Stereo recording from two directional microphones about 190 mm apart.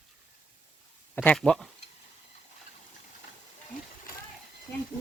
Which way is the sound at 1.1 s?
10° left (ahead or behind).